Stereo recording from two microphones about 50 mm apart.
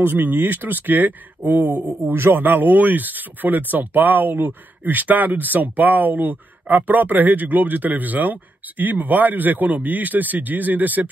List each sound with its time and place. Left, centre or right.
0.2 s speech: right
2.0 s speech: right